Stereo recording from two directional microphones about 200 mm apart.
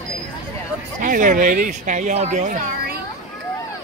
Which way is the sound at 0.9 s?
40° right (ahead or behind).